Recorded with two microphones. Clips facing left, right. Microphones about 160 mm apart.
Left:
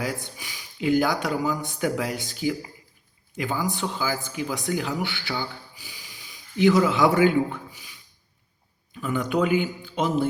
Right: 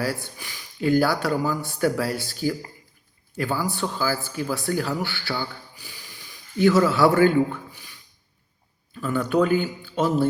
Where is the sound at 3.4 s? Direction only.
15° left (ahead or behind).